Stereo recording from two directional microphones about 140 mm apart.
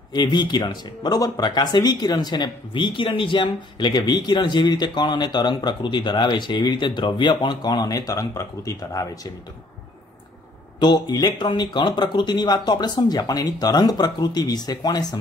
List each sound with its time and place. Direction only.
0.1 s speech: 30° left (ahead or behind)
10.8 s speech: 30° left (ahead or behind)